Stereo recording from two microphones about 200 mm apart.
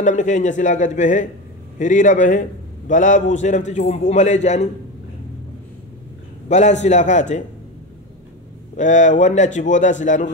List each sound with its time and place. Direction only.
0.0 s a man's voice: 40° left (ahead or behind)
6.5 s a man's voice: 35° left (ahead or behind)
8.7 s a man's voice: 40° left (ahead or behind)